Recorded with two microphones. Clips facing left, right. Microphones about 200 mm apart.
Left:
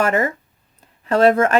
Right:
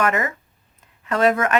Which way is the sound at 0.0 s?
30° left (ahead or behind).